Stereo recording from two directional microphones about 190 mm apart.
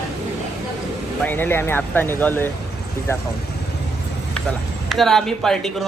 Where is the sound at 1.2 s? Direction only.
10° left (ahead or behind).